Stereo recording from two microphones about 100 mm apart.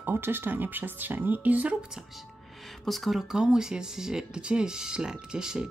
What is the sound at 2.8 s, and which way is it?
Speech, centre (ahead or behind).